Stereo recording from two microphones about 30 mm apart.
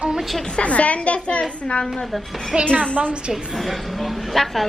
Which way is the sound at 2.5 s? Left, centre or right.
Right.